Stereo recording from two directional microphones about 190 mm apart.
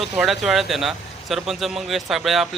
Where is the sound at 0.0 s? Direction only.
Centre (ahead or behind).